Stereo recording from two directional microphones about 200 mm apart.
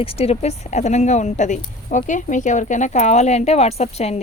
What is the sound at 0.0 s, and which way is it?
Speech, 30° left (ahead or behind).